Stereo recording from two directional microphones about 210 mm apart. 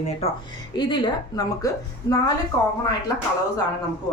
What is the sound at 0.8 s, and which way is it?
Speech, 20° left (ahead or behind).